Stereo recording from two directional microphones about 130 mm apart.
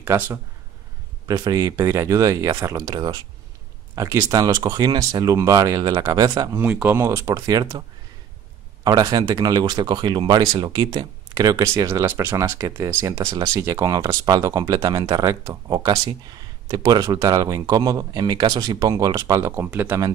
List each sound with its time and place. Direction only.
0.0 s speech: 20° right (ahead or behind)
1.2 s speech: 30° right (ahead or behind)
6.7 s speech: 10° right (ahead or behind)
7.0 s speech: 20° right (ahead or behind)
8.8 s speech: 25° right (ahead or behind)